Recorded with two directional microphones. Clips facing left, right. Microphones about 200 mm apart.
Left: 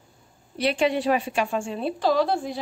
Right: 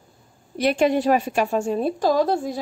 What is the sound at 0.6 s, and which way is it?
A woman's voice, 45° right (ahead or behind).